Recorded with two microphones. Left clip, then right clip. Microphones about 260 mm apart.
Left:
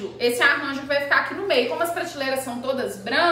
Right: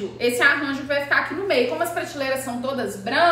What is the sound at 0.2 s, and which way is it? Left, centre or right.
A woman's voice, centre.